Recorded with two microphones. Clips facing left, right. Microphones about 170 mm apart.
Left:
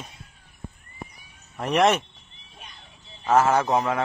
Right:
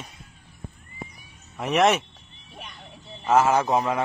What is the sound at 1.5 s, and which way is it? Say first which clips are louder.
Speech: even; centre (ahead or behind).